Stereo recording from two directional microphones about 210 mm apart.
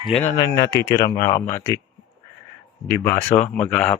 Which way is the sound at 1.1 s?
15° left (ahead or behind).